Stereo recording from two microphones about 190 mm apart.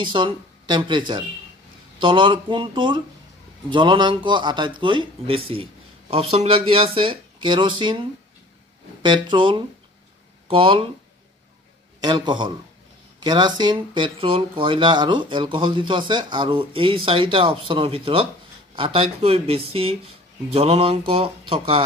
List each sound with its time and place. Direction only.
0.0 s speech: 25° right (ahead or behind)
9.0 s speech: 25° right (ahead or behind)
12.0 s speech: 25° right (ahead or behind)